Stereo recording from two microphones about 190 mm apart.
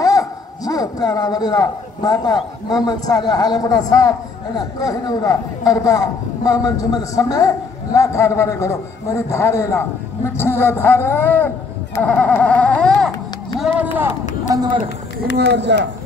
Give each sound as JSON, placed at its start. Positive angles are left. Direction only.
{"t": 0.0, "sound": "a sound", "side_deg": 20}
{"t": 2.7, "sound": "a man's voice", "side_deg": 20}
{"t": 14.5, "sound": "speech", "side_deg": -20}
{"t": 15.5, "sound": "speech", "side_deg": -65}